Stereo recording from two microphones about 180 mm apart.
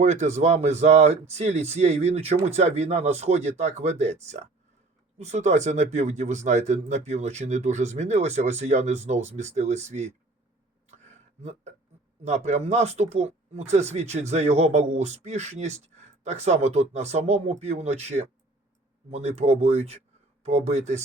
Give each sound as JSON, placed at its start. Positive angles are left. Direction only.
{"t": 0.0, "sound": "speech", "side_deg": -40}
{"t": 10.8, "sound": "a sound", "side_deg": -40}
{"t": 12.2, "sound": "speech", "side_deg": -40}